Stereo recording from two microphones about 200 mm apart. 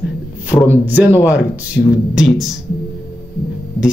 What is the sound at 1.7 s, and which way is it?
Speech, 55° left (ahead or behind).